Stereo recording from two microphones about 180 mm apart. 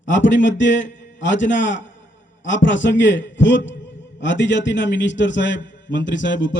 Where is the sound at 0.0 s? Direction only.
90° left.